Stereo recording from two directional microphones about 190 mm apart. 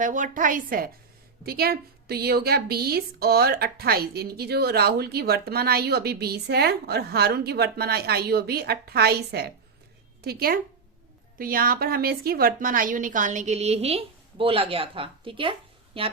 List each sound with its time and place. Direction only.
0.0 s a woman's voice: 40° right (ahead or behind)